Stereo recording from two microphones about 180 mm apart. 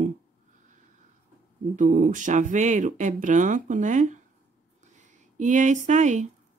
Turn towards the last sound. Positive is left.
turn(degrees=-40)  # may be behind; listen again after turning